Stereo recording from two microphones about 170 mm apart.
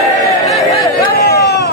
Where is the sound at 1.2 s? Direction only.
75° left (ahead or behind).